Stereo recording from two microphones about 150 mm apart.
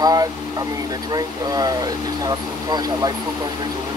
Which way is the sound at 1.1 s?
25° right (ahead or behind).